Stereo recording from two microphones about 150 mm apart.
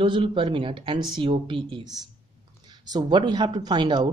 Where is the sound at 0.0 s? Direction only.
35° right (ahead or behind).